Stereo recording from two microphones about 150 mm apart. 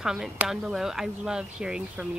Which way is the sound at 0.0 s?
5° right (ahead or behind).